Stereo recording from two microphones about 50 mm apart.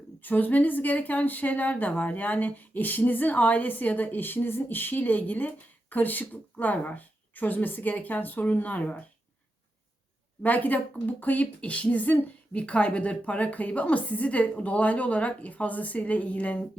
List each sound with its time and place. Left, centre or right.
0.2 s a woman's voice: left
10.4 s speech: left